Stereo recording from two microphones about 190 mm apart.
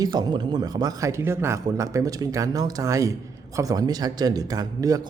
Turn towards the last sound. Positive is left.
turn(degrees=-20)  # may be behind; listen again after turning